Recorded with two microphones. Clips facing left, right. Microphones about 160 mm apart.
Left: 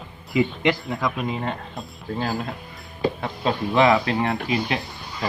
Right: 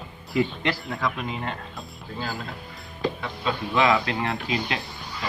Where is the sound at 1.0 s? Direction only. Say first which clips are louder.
Left 3 dB; 15° left (ahead or behind).